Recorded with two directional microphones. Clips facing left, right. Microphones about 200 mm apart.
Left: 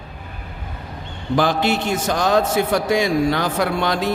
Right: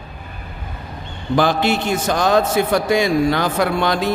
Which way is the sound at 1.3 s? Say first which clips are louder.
Right 2 dB; 70° right (ahead or behind).